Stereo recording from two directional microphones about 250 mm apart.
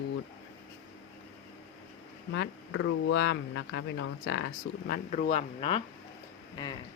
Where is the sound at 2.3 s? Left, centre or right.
Left.